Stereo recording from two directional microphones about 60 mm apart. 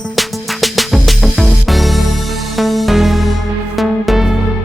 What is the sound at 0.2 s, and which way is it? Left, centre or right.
Music, centre.